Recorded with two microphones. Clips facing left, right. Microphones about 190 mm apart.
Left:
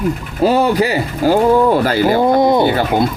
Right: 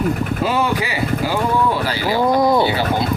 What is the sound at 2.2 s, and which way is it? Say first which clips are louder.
Speech: even; 25° left (ahead or behind).